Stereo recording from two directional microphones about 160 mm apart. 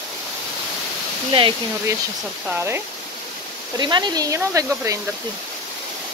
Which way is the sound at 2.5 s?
15° right (ahead or behind).